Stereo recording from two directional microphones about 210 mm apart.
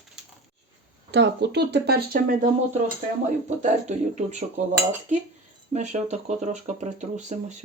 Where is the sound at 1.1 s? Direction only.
55° right (ahead or behind); by 4.4 s 30° right (ahead or behind).